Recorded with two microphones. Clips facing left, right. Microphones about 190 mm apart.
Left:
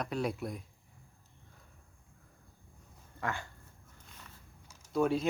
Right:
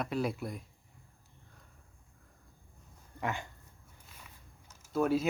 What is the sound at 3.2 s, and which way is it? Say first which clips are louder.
Dog: right 1 dB; 20° right (ahead or behind).